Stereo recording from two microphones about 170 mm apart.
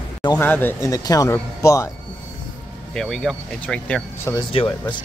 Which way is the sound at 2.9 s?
5° left (ahead or behind).